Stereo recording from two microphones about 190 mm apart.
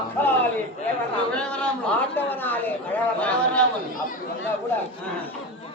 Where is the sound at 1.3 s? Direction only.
5° left (ahead or behind).